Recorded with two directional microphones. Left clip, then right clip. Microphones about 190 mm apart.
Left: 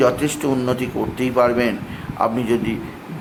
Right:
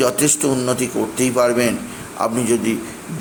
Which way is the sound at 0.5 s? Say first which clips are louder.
Right 2 dB; centre (ahead or behind).